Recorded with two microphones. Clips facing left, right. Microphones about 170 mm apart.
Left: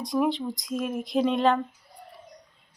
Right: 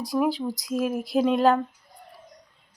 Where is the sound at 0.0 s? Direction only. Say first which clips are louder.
Right 1 dB; 5° right (ahead or behind).